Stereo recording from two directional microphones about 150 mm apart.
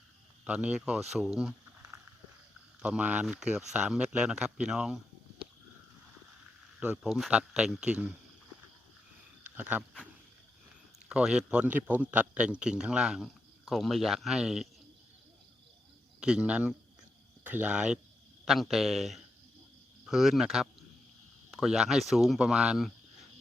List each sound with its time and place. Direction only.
0.4 s a man's voice: 5° right (ahead or behind)
6.7 s a man's voice: 5° right (ahead or behind)
9.6 s speech: 10° right (ahead or behind)
11.1 s a man's voice: 5° right (ahead or behind)
16.2 s a man's voice: 5° right (ahead or behind)